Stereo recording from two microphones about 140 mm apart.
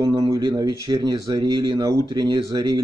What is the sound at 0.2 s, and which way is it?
Speech, 30° right (ahead or behind).